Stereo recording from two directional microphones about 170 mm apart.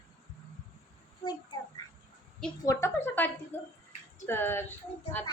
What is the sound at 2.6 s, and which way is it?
A woman's voice, 15° left (ahead or behind).